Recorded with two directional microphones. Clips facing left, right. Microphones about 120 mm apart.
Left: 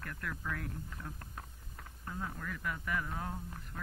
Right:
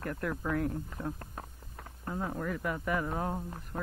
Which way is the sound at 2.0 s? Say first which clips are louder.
Right 7 dB; 40° right (ahead or behind).